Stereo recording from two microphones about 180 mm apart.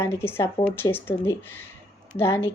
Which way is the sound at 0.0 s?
15° left (ahead or behind).